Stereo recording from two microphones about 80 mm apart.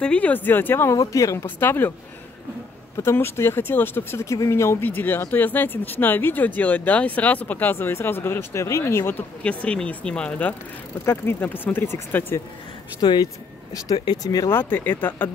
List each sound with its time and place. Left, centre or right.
0.0 s speech: centre
0.9 s speech: left
1.4 s speech: left
3.0 s speech: left
4.8 s speech: left
9.4 s speech: centre
11.1 s speech: left
13.0 s speech: left
14.0 s speech: left
14.5 s speech: left